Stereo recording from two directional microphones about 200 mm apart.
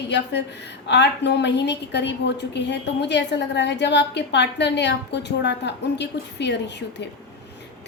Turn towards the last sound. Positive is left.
turn(degrees=60)  # may be behind; listen again after turning